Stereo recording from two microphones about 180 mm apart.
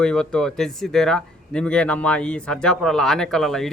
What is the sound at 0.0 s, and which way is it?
Speech, 5° left (ahead or behind).